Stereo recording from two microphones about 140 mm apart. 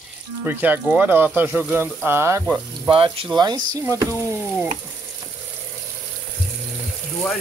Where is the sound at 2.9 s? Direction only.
40° right (ahead or behind); by 4.0 s 25° right (ahead or behind).